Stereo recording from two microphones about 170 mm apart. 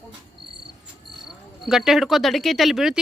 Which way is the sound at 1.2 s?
Centre (ahead or behind).